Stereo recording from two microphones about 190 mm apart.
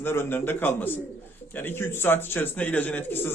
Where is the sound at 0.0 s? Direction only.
10° left (ahead or behind).